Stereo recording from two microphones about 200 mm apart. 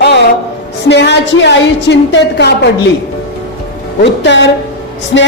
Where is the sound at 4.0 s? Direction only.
60° left (ahead or behind).